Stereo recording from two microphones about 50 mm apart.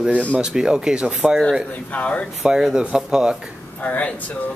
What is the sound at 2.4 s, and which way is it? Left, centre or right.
Speech, centre.